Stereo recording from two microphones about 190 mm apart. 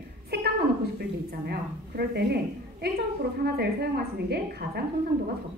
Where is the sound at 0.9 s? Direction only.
55° right (ahead or behind).